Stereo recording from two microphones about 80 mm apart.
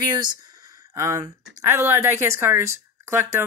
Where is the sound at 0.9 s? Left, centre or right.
Right.